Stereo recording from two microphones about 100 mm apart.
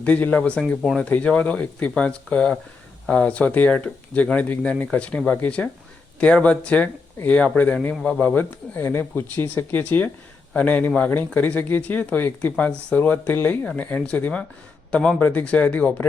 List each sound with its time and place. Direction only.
0.0 s speech: 15° left (ahead or behind)